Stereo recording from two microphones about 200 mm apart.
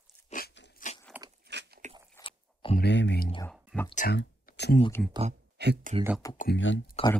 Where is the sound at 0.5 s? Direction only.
60° left (ahead or behind).